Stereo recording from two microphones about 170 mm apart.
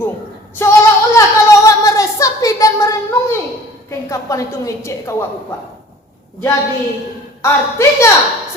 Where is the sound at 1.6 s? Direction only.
20° left (ahead or behind).